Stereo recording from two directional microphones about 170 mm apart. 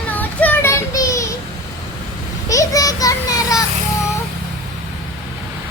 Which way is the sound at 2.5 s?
20° left (ahead or behind).